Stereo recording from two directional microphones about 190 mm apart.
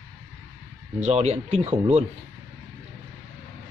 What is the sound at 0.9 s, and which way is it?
Speech, 35° right (ahead or behind).